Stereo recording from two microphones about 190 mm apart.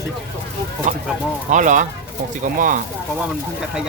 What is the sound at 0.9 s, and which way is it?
Speech, 40° right (ahead or behind).